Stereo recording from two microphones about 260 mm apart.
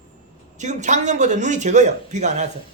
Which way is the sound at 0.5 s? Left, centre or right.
Right.